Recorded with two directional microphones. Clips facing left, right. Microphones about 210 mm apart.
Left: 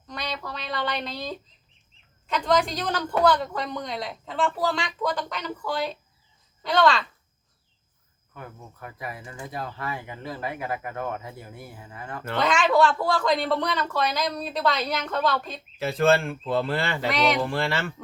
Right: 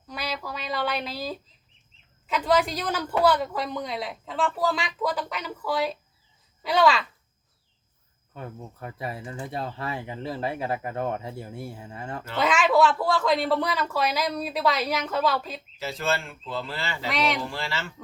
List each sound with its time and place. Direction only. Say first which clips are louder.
0.1 s a sound: right 1 dB; 5° right (ahead or behind)
2.2 s a woman's voice: even; 5° right (ahead or behind)
8.3 s speech: right 4 dB; 25° right (ahead or behind)
12.4 s speech: even; 5° right (ahead or behind)
15.8 s a man's voice: left 8 dB; 55° left (ahead or behind)
17.1 s a woman's voice: left 2 dB; centre (ahead or behind)
17.4 s a man's voice: left 6 dB; 55° left (ahead or behind)